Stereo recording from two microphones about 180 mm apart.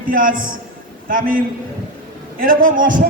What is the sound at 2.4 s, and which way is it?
Speech, 50° right (ahead or behind).